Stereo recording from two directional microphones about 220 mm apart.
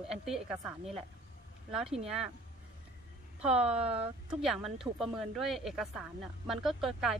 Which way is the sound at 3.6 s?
30° right (ahead or behind).